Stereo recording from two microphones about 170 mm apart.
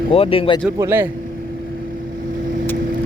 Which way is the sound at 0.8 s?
15° right (ahead or behind).